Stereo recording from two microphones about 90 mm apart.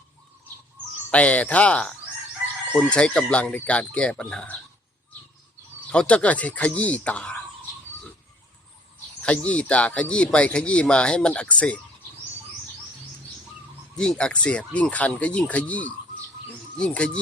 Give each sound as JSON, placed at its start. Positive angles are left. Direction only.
{"t": 1.1, "sound": "speech", "side_deg": 15}
{"t": 5.9, "sound": "speech", "side_deg": 10}
{"t": 9.2, "sound": "speech", "side_deg": 15}
{"t": 13.9, "sound": "speech", "side_deg": 10}